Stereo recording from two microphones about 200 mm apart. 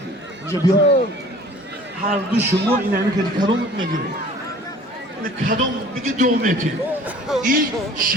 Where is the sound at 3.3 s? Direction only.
25° right (ahead or behind).